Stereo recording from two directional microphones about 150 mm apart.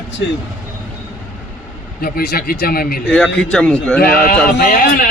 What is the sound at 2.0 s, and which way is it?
Speech, 90° left.